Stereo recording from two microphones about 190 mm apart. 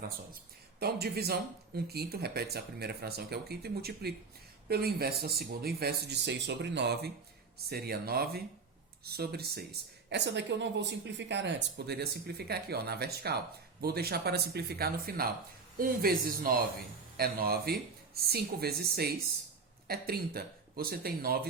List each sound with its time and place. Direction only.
0.8 s speech: 55° right (ahead or behind)